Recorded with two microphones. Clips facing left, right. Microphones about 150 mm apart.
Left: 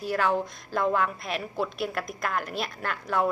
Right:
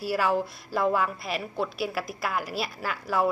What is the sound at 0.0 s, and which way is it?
A woman's voice, 5° right (ahead or behind).